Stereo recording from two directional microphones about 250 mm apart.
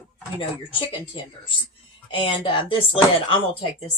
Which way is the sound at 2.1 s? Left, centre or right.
Centre.